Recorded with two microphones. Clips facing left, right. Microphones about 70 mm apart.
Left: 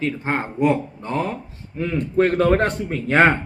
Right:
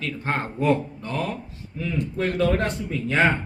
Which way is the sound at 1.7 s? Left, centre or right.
Left.